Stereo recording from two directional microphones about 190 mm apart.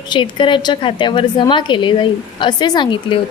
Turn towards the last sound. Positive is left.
turn(degrees=25)  # may be behind; listen again after turning